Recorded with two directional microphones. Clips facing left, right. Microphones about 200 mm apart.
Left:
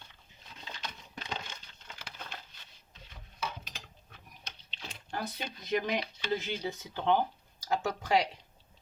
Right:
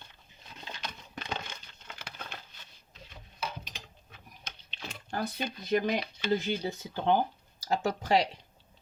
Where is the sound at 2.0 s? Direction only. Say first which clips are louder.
Right 1 dB; 55° right (ahead or behind).